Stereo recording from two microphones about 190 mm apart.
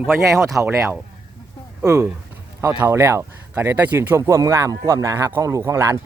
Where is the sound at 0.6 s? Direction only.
15° right (ahead or behind).